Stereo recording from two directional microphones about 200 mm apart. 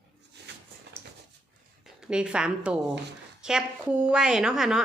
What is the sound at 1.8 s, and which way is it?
A woman's voice, 5° right (ahead or behind).